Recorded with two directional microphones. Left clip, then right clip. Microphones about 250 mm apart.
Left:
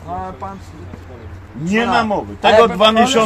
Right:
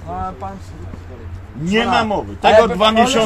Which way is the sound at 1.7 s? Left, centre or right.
Centre.